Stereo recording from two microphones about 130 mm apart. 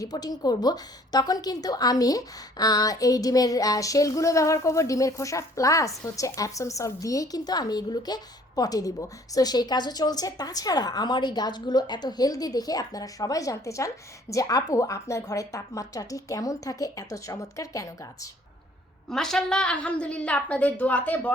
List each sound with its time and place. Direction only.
0.0 s a woman's voice: 30° left (ahead or behind)
19.0 s a woman's voice: 5° left (ahead or behind)